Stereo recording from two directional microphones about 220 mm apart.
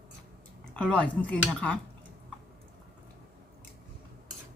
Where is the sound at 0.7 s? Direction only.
5° left (ahead or behind).